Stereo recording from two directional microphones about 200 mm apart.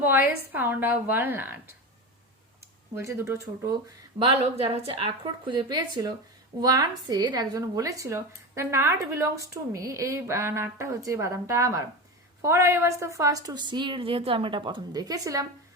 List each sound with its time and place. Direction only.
0.0 s a woman's voice: 10° right (ahead or behind)
2.9 s a woman's voice: 15° right (ahead or behind)
4.2 s a woman's voice: 30° right (ahead or behind)